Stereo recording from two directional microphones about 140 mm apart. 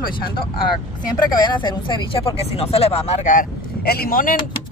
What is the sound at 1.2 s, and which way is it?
Speech, 30° left (ahead or behind).